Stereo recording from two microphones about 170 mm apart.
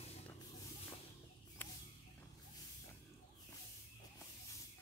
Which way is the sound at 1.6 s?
10° left (ahead or behind).